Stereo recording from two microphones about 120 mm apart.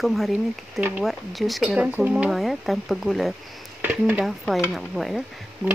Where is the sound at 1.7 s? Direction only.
15° right (ahead or behind).